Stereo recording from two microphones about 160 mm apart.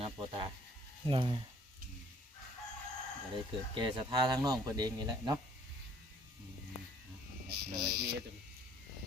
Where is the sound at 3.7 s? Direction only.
30° right (ahead or behind).